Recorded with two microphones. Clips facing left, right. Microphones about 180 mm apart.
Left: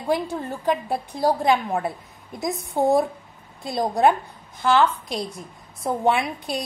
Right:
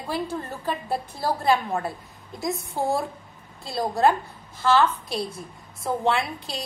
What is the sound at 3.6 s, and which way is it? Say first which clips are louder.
A woman's voice: left 2 dB; 20° left (ahead or behind).